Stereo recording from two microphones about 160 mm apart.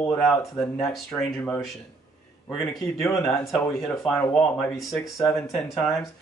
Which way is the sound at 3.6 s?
Centre (ahead or behind).